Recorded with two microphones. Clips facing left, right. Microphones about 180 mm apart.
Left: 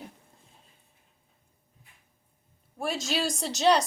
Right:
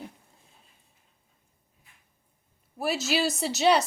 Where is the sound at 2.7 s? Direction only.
5° right (ahead or behind).